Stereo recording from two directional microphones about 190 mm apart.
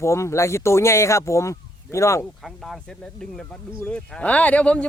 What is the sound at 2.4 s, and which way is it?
Speech, centre (ahead or behind).